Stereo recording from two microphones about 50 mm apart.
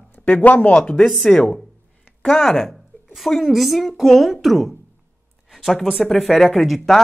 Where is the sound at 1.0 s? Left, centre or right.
Centre.